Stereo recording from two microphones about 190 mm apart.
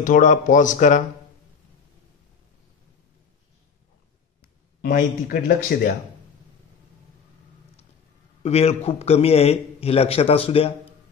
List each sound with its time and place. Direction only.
0.0 s a man's voice: 40° left (ahead or behind)
4.8 s speech: 50° left (ahead or behind)
8.4 s a man's voice: 35° left (ahead or behind)